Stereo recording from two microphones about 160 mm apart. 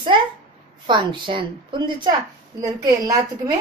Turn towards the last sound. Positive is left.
turn(degrees=-25)  # may be behind; listen again after turning